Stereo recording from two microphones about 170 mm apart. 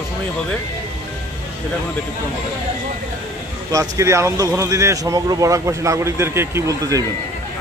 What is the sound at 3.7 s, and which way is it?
Speech, 20° right (ahead or behind).